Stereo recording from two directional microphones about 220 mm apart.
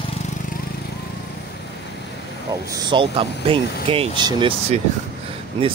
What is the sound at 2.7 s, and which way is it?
Speech, 20° right (ahead or behind).